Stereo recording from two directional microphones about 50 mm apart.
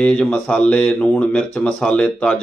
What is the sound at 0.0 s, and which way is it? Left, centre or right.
Speech, left.